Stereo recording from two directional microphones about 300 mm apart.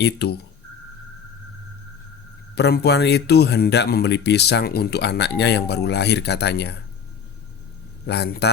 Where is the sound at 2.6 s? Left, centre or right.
Left.